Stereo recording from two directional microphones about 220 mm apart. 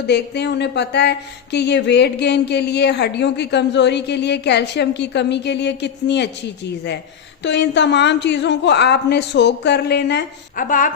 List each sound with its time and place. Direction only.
0.1 s speech: 50° left (ahead or behind)
7.4 s speech: 55° left (ahead or behind); by 10.9 s 35° left (ahead or behind)